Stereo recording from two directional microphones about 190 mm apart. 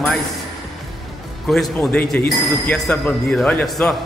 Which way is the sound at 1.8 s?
10° left (ahead or behind).